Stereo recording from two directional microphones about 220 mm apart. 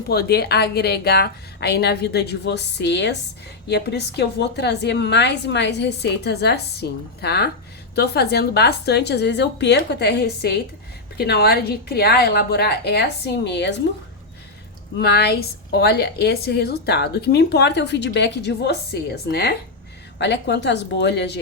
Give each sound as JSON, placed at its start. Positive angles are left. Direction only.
{"t": 0.1, "sound": "a woman's voice", "side_deg": 45}
{"t": 15.0, "sound": "a woman's voice", "side_deg": 45}